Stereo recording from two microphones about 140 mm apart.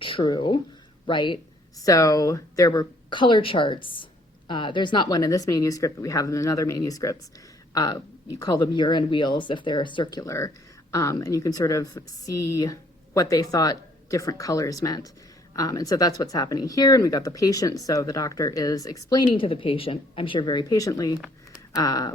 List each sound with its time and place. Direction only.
0.0 s speech: 35° left (ahead or behind)
1.8 s speech: 25° left (ahead or behind)